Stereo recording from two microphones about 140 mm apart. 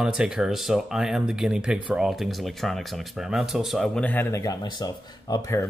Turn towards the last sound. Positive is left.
turn(degrees=25)  # may be behind; listen again after turning